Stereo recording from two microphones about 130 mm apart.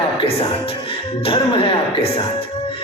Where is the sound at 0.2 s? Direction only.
45° left (ahead or behind).